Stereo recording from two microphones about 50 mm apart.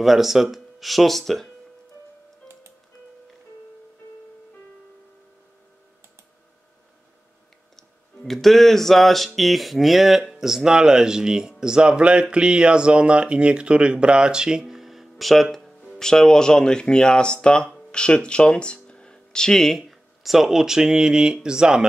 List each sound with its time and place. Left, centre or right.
0.0 s speech: centre
2.4 s music: centre
8.3 s speech: centre
19.9 s speech: centre